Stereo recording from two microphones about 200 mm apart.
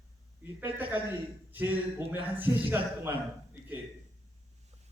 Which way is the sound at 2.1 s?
10° right (ahead or behind).